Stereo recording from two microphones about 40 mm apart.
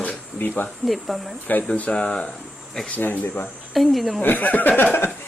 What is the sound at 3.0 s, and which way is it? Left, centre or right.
Speech, left.